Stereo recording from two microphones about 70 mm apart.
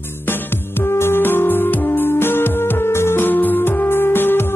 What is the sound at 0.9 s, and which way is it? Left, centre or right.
Music, left.